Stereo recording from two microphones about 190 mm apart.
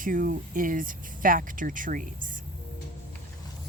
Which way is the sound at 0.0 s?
45° right (ahead or behind).